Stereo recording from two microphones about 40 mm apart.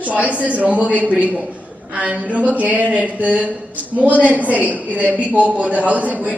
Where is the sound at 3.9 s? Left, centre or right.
Right.